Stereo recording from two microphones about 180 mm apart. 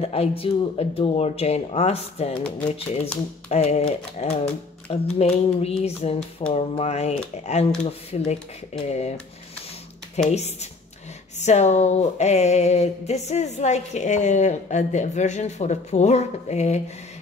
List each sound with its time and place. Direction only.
0.0 s speech: 35° left (ahead or behind)
10.3 s speech: 35° left (ahead or behind)